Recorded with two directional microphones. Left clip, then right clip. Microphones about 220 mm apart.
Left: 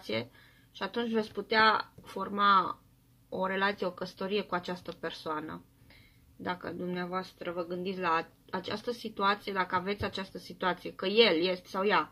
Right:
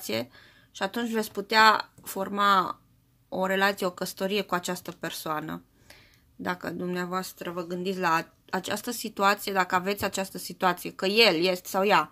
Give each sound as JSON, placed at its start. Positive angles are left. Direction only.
{"t": 0.0, "sound": "speech", "side_deg": -45}